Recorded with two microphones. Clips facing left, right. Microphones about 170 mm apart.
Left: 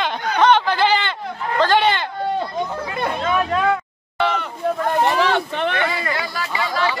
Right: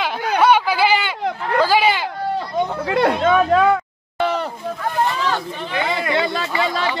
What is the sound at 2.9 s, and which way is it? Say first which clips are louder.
Chatter: right 7 dB; 85° right.